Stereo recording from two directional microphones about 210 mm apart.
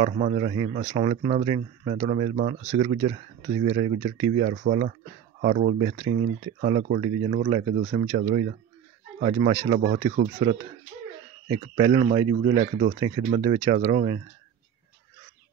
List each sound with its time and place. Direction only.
0.0 s speech: 30° right (ahead or behind)
5.8 s speech: 30° right (ahead or behind)